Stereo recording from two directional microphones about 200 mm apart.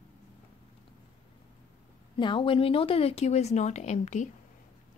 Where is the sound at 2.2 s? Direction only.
25° left (ahead or behind).